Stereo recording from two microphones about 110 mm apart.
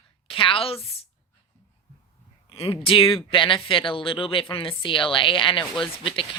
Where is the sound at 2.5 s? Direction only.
60° left (ahead or behind).